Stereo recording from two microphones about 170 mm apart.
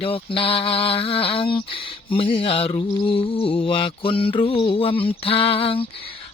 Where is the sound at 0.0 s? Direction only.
30° left (ahead or behind).